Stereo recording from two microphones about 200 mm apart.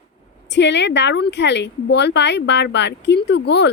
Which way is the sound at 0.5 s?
60° left (ahead or behind).